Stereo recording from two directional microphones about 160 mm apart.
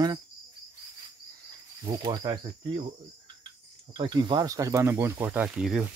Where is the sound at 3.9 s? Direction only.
30° right (ahead or behind).